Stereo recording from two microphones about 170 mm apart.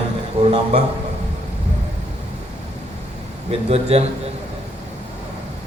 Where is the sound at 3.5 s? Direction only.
40° right (ahead or behind).